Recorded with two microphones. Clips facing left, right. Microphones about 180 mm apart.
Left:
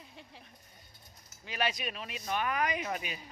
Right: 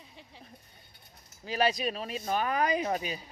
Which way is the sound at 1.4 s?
35° right (ahead or behind).